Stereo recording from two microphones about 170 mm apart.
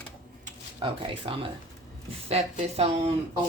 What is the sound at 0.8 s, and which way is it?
Speech, 30° right (ahead or behind).